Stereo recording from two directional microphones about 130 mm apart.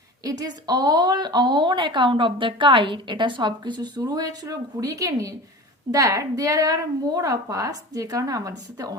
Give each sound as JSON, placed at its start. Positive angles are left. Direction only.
{"t": 0.3, "sound": "a woman's voice", "side_deg": -30}